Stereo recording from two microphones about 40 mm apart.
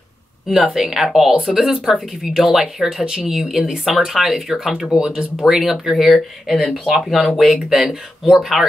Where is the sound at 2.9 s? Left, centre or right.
Centre.